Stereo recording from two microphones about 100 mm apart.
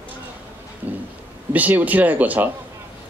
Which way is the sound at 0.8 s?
20° right (ahead or behind).